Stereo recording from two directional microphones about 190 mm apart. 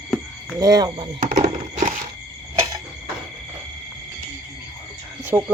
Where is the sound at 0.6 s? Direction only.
20° right (ahead or behind).